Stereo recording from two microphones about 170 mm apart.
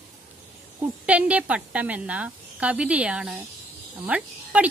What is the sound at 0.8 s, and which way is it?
A woman's voice, 10° right (ahead or behind).